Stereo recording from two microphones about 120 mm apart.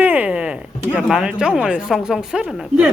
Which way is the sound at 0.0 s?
15° right (ahead or behind).